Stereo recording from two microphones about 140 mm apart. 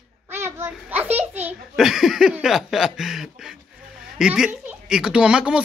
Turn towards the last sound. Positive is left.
turn(degrees=-5)  # may be behind; listen again after turning